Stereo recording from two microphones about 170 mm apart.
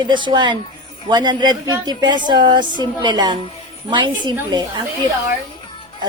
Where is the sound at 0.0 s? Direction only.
25° right (ahead or behind).